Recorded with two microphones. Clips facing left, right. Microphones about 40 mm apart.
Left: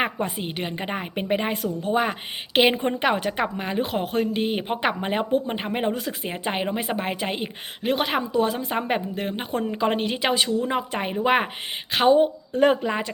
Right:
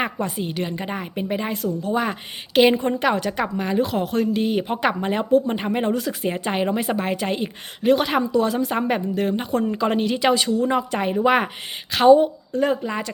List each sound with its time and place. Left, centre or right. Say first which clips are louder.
0.0 s a woman's voice: right 1 dB; left
2.6 s a woman's voice: right 3 dB; centre
12.5 s speech: left 2 dB; left